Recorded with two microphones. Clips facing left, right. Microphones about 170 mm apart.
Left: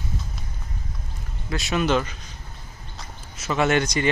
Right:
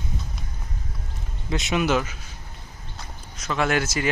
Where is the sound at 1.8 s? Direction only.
10° right (ahead or behind).